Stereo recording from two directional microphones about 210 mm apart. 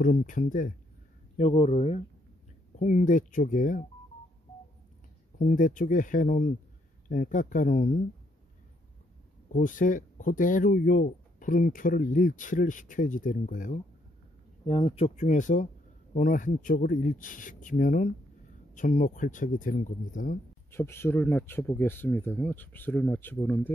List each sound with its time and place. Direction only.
0.0 s speech: 40° left (ahead or behind)
1.3 s speech: 25° left (ahead or behind)
5.4 s speech: 40° left (ahead or behind)
9.5 s speech: 40° left (ahead or behind)
14.7 s speech: 25° left (ahead or behind)
20.7 s speech: 10° left (ahead or behind)